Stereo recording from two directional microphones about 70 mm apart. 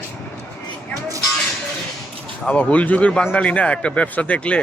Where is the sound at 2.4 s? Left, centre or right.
Left.